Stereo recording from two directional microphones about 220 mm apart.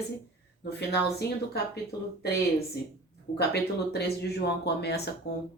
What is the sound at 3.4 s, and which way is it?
Speech, 50° left (ahead or behind).